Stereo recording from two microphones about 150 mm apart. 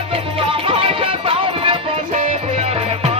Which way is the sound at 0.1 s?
35° right (ahead or behind).